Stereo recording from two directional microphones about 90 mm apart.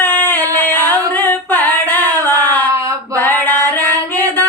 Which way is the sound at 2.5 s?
40° right (ahead or behind).